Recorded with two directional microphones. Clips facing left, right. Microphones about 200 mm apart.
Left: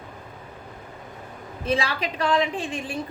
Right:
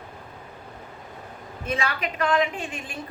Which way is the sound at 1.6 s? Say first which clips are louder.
Left 3 dB; 30° left (ahead or behind).